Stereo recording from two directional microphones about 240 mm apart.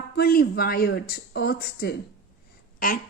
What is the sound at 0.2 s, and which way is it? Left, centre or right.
A woman's voice, left.